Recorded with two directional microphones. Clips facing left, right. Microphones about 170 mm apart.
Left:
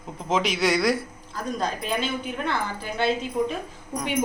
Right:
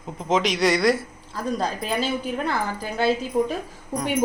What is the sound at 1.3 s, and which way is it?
A woman's voice, 35° right (ahead or behind).